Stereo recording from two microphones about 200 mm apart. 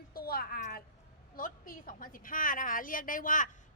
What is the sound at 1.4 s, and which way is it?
A woman's voice, 45° left (ahead or behind).